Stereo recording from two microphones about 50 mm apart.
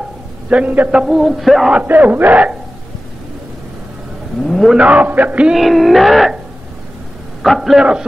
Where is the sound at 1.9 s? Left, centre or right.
Right.